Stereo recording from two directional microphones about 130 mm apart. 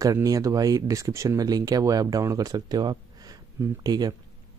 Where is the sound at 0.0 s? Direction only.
25° right (ahead or behind).